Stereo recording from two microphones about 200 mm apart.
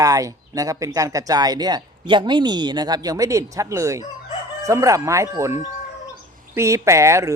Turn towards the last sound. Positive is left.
turn(degrees=-15)  # may be behind; listen again after turning